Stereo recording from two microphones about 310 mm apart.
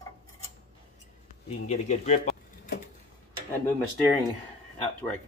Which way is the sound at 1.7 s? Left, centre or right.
Left.